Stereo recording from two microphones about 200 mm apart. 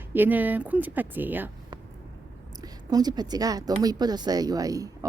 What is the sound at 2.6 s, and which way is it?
A woman's voice, 20° right (ahead or behind).